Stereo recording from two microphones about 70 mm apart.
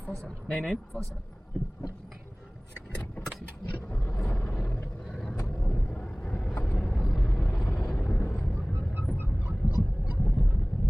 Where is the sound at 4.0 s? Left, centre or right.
Left; by 7.9 s centre.